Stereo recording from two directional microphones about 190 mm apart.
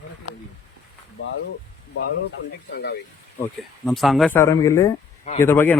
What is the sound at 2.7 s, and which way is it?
Speech, 60° left (ahead or behind).